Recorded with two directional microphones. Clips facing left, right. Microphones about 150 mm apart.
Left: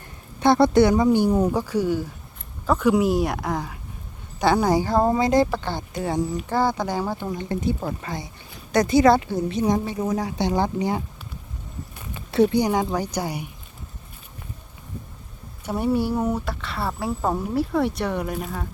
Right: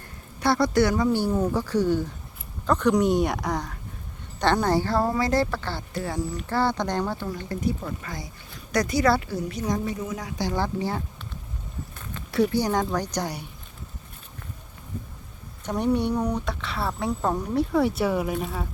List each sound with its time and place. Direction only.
0.3 s speech: 25° left (ahead or behind)
7.8 s speech: 35° left (ahead or behind)
8.7 s a woman's voice: 25° left (ahead or behind)
12.3 s a woman's voice: 25° left (ahead or behind)
12.6 s speech: 10° left (ahead or behind)
15.6 s speech: 5° left (ahead or behind)